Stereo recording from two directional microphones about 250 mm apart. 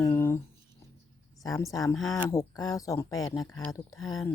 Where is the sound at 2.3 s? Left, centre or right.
Centre.